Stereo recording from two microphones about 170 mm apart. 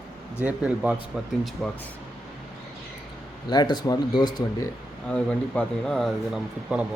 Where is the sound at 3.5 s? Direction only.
25° left (ahead or behind).